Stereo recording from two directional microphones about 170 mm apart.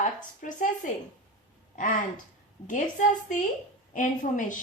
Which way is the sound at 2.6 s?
50° left (ahead or behind).